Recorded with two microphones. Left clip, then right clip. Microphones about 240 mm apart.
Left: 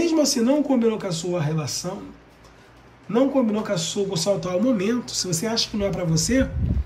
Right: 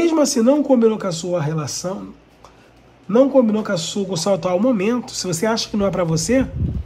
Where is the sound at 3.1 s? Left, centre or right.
Centre.